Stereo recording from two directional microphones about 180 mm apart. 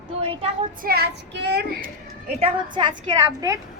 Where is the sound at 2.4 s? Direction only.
25° right (ahead or behind).